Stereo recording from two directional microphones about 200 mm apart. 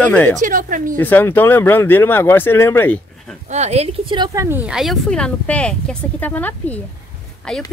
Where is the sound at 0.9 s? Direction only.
10° left (ahead or behind).